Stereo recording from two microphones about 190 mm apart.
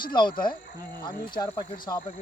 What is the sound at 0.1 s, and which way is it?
Speech, 25° left (ahead or behind).